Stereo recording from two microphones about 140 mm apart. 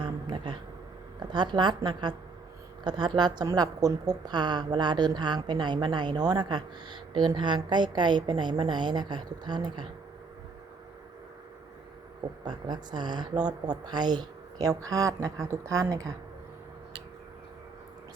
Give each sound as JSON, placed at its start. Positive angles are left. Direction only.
{"t": 0.0, "sound": "a sound", "side_deg": -35}
{"t": 1.2, "sound": "a woman's voice", "side_deg": -30}
{"t": 12.5, "sound": "a woman's voice", "side_deg": -30}